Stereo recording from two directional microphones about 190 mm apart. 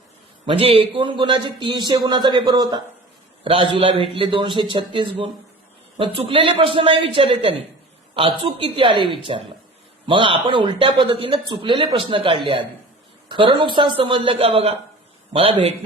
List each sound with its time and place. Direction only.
0.4 s a man's voice: 30° right (ahead or behind)